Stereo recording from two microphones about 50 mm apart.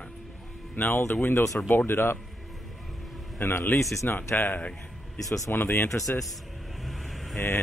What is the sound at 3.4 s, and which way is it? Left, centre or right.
Speech, left.